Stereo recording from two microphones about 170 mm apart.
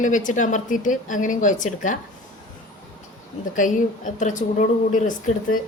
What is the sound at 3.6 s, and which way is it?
A woman's voice, 50° left (ahead or behind).